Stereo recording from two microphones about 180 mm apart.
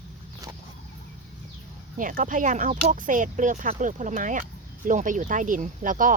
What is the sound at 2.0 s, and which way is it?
Speech, 50° right (ahead or behind).